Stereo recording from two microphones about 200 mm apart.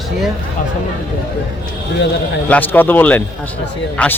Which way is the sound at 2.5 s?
10° left (ahead or behind).